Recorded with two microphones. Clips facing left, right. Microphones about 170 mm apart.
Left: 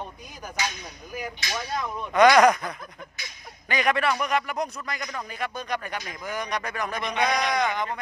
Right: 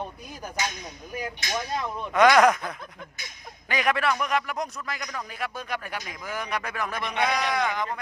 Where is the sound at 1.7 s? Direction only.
Centre (ahead or behind).